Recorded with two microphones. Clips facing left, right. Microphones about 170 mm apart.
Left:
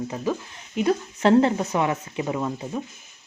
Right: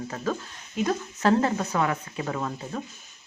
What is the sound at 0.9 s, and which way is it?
Speech, 25° left (ahead or behind).